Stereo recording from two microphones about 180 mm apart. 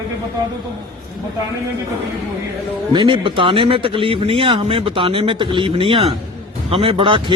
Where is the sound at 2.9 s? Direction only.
25° right (ahead or behind).